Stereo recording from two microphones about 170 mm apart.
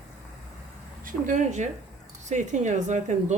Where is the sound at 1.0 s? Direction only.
50° right (ahead or behind).